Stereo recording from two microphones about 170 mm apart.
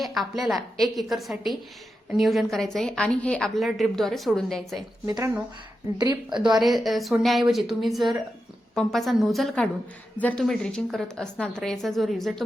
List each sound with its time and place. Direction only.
0.0 s a woman's voice: centre (ahead or behind)
5.0 s a woman's voice: 20° right (ahead or behind)
6.5 s a woman's voice: centre (ahead or behind)